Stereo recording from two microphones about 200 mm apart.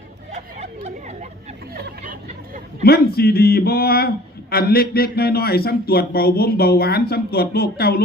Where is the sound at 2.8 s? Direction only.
50° left (ahead or behind).